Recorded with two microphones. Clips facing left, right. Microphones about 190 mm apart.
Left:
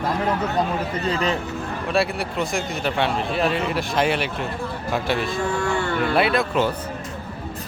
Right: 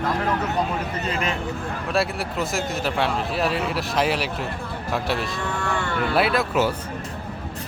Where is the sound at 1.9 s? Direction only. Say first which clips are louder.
Left 2 dB; centre (ahead or behind).